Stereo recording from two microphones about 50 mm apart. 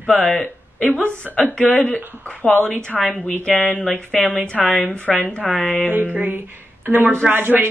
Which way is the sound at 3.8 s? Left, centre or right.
Centre.